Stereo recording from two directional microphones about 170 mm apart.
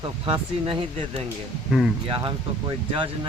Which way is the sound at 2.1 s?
30° right (ahead or behind).